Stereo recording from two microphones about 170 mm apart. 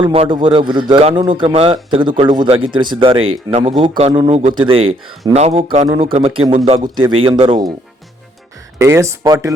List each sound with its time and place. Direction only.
0.0 s a man's voice: 30° right (ahead or behind)
8.8 s speech: 15° right (ahead or behind)